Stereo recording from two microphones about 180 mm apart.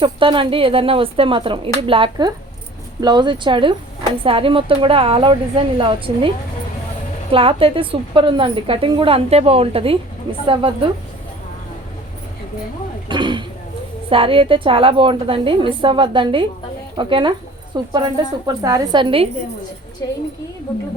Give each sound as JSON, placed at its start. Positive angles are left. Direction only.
{"t": 0.0, "sound": "a woman's voice", "side_deg": -30}
{"t": 13.1, "sound": "throat clearing", "side_deg": -25}
{"t": 14.1, "sound": "a woman's voice", "side_deg": -30}